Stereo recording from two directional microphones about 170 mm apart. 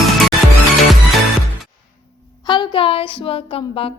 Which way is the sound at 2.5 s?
30° left (ahead or behind).